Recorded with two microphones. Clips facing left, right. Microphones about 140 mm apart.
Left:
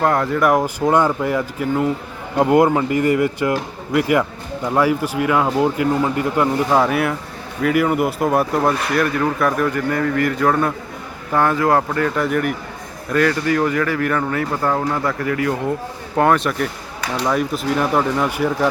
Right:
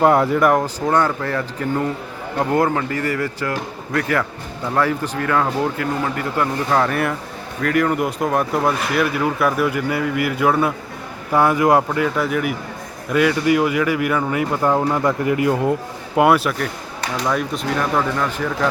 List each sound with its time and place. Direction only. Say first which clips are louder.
0.0 s a man's voice: right 3 dB; 10° right (ahead or behind)
0.4 s speech: left 3 dB; 5° left (ahead or behind)
0.9 s speech: left 3 dB; 15° left (ahead or behind)
2.4 s speech: left 4 dB; 20° left (ahead or behind)
6.7 s a man's voice: left 2 dB; 10° left (ahead or behind); by 11.9 s 15° right (ahead or behind)
11.9 s a man's voice: left 1 dB; 5° right (ahead or behind); by 15.7 s 20° right (ahead or behind)
16.1 s a man's voice: right 1 dB; 10° right (ahead or behind); by 18.7 s 10° left (ahead or behind)